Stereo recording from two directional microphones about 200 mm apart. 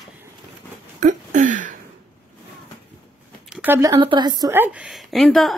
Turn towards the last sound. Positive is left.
turn(degrees=0)  # may be behind; listen again after turning